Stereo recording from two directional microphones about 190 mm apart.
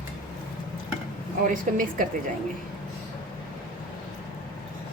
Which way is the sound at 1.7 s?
45° right (ahead or behind).